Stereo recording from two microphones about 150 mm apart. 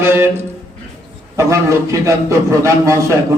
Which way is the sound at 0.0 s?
15° right (ahead or behind).